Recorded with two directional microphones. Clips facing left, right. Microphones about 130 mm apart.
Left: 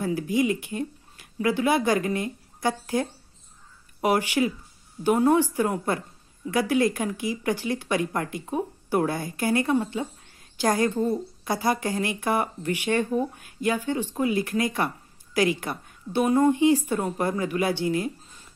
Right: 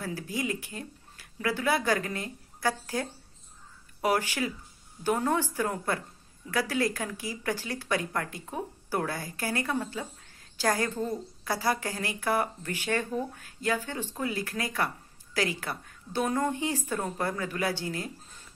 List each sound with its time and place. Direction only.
0.0 s speech: 20° left (ahead or behind)